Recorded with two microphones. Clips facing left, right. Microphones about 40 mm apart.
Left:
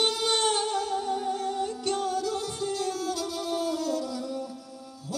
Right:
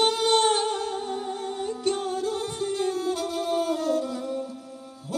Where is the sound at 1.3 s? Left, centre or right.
Right.